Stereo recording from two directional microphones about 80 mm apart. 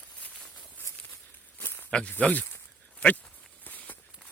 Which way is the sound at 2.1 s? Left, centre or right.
Centre.